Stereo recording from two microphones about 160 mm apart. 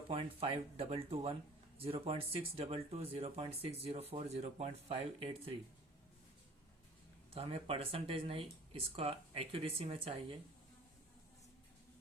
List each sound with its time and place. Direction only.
0.1 s speech: 35° right (ahead or behind)
7.3 s speech: 35° right (ahead or behind)